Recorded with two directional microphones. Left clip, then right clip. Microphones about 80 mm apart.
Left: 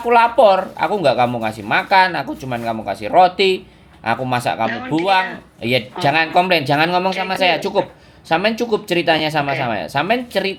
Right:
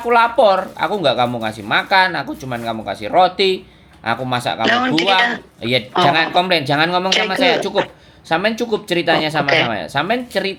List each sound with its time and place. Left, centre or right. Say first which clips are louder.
0.1 s speech: left 1 dB; centre
4.6 s speech: right 5 dB; right
6.0 s speech: right 2 dB; centre